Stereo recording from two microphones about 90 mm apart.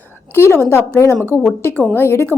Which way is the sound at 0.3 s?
25° left (ahead or behind).